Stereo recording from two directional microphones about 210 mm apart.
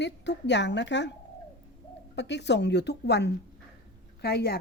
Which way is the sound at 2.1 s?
55° left (ahead or behind).